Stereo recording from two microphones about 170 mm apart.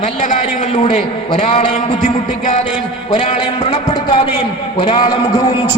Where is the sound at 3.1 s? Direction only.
40° left (ahead or behind).